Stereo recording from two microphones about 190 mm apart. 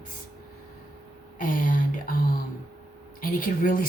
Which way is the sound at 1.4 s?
45° left (ahead or behind).